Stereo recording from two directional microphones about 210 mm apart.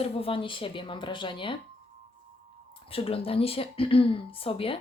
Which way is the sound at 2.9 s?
25° left (ahead or behind).